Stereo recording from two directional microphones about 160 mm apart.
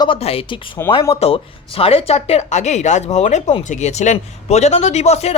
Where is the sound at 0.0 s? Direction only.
35° left (ahead or behind).